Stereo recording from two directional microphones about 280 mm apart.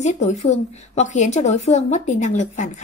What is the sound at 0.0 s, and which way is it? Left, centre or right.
A woman's voice, left.